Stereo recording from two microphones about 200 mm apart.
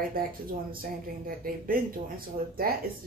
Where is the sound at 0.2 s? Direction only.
45° right (ahead or behind).